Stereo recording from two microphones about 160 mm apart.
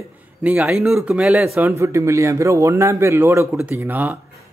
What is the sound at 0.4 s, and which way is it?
Speech, 10° right (ahead or behind).